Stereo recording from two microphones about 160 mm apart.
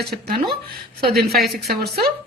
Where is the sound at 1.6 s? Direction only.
75° right (ahead or behind).